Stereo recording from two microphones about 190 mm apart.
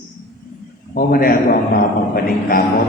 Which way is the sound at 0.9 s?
50° left (ahead or behind).